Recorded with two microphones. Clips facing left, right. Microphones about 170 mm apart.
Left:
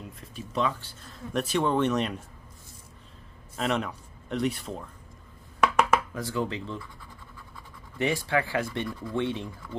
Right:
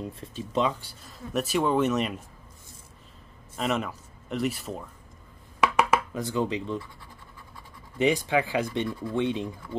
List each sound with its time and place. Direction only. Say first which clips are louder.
0.0 s speech: right 6 dB; 25° right (ahead or behind); by 2.1 s 5° right (ahead or behind)
3.5 s speech: even; centre (ahead or behind)
5.6 s a sound: even; 5° right (ahead or behind)
6.1 s speech: right 3 dB; 20° right (ahead or behind)
8.0 s speech: right 3 dB; 20° right (ahead or behind)